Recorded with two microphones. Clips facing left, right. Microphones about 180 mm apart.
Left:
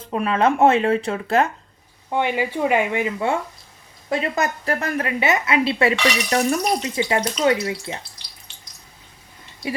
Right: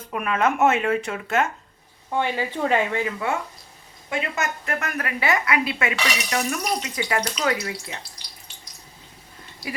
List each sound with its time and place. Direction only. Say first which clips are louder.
0.0 s a woman's voice: left 4 dB; 30° left (ahead or behind)
2.0 s speech: left 3 dB; 15° left (ahead or behind)
4.1 s a woman's voice: left 5 dB; 35° left (ahead or behind)